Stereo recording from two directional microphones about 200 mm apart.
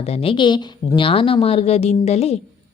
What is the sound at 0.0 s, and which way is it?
A woman's voice, 30° left (ahead or behind).